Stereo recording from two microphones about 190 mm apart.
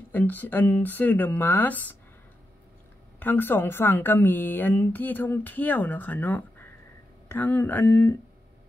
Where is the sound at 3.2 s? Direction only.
10° left (ahead or behind).